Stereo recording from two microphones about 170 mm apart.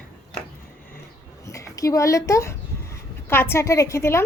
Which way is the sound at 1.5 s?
20° left (ahead or behind).